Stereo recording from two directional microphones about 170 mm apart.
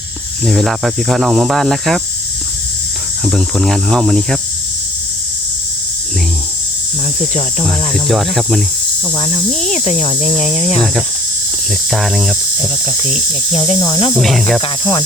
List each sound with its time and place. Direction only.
0.4 s speech: centre (ahead or behind)
3.2 s speech: centre (ahead or behind)
7.9 s speech: centre (ahead or behind)
9.1 s cricket: 30° left (ahead or behind)
9.6 s cricket: 45° left (ahead or behind)
11.9 s speech: centre (ahead or behind)
13.1 s cricket: 40° left (ahead or behind)
13.6 s cricket: 25° left (ahead or behind)
14.2 s speech: centre (ahead or behind)
14.6 s cricket: 30° left (ahead or behind)